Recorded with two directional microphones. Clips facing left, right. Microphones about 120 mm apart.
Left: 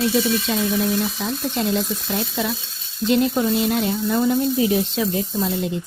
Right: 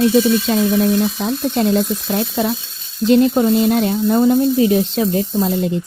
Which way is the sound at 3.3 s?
35° right (ahead or behind).